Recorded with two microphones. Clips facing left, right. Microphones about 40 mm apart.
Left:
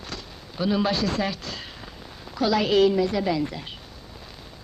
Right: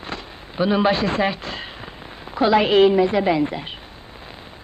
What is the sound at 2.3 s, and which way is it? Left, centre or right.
A woman's voice, right.